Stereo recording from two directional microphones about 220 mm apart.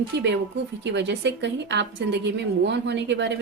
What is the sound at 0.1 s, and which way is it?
A woman's voice, 50° right (ahead or behind).